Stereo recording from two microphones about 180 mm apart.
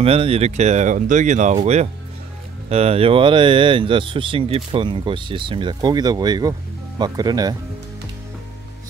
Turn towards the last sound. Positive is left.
turn(degrees=-20)  # may be behind; listen again after turning